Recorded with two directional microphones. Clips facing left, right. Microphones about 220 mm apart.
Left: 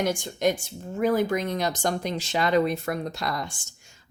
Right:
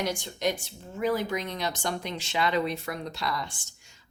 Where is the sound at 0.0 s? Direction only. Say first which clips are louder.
Left 5 dB; 50° left (ahead or behind).